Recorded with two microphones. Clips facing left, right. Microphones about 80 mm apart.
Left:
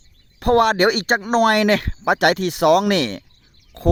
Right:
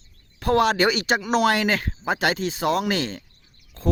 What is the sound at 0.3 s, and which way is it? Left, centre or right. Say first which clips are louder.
Speech: left 4 dB; left.